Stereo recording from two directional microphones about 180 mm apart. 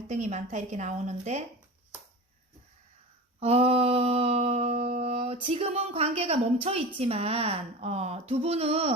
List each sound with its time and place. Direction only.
0.1 s a woman's voice: 40° right (ahead or behind)
3.4 s a woman's voice: 35° right (ahead or behind)